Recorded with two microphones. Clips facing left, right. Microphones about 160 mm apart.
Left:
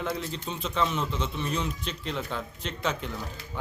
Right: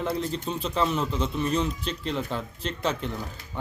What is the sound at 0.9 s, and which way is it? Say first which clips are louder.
Speech: right 3 dB; 35° right (ahead or behind).